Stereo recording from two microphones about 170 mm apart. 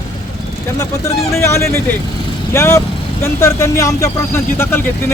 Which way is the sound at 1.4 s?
15° left (ahead or behind).